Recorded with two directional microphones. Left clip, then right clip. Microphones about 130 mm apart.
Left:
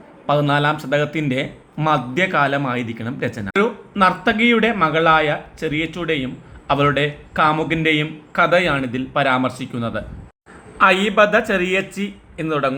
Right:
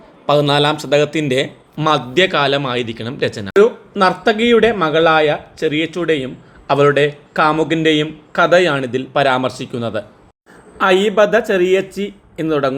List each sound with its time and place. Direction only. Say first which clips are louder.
0.3 s a man's voice: right 4 dB; 45° right (ahead or behind)